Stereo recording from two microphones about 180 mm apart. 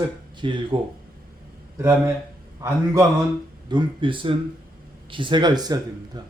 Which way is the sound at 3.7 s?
25° right (ahead or behind).